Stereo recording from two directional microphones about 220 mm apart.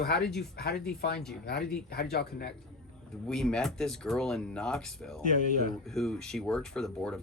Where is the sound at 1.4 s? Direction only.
50° left (ahead or behind).